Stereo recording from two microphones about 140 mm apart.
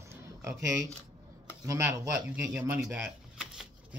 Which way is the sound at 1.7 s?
15° right (ahead or behind).